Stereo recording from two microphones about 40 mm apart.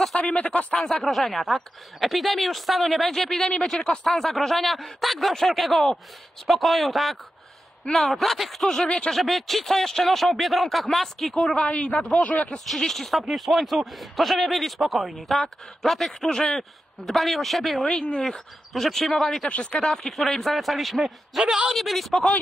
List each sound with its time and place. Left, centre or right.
0.2 s speech: left
0.7 s speech: centre
4.1 s speech: centre
9.1 s speech: centre
11.5 s speech: left
12.5 s speech: centre
16.3 s speech: centre
18.1 s speech: centre
19.6 s speech: left
20.1 s speech: centre